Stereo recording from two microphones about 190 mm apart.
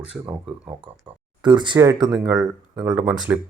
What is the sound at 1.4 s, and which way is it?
Speech, 25° right (ahead or behind).